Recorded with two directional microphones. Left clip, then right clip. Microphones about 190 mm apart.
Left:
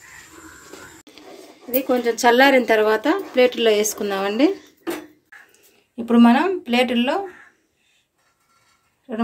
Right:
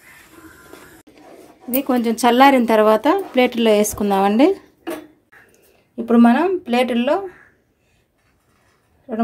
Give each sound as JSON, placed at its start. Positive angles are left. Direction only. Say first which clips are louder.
{"t": 1.7, "sound": "speech", "louder": "even", "side_deg": -55}
{"t": 5.9, "sound": "speech", "louder": "right 1 dB", "side_deg": -45}